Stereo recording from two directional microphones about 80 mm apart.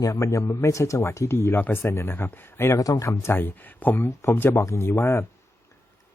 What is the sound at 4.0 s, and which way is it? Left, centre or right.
Speech, left.